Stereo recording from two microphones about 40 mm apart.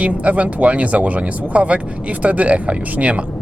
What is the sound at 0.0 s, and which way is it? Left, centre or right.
Speech, right.